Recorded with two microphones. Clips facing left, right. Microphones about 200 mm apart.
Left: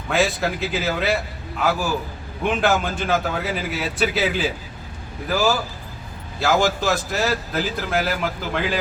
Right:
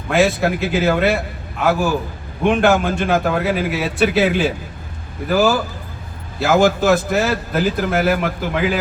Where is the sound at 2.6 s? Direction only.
60° right (ahead or behind).